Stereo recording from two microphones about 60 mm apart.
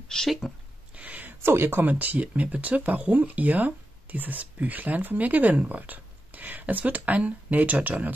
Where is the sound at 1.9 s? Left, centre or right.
Right.